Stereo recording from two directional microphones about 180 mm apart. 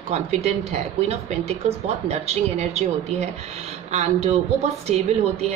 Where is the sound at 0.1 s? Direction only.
35° right (ahead or behind).